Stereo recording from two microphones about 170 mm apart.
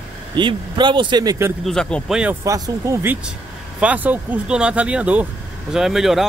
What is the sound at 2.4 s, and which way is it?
Speech, 20° right (ahead or behind).